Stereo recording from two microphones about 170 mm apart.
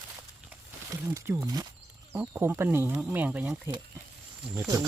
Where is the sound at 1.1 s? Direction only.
10° right (ahead or behind).